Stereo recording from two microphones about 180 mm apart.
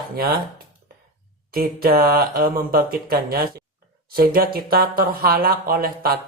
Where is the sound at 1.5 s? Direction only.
55° right (ahead or behind).